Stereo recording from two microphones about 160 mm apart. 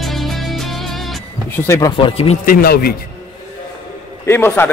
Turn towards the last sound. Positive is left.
turn(degrees=15)  # may be behind; listen again after turning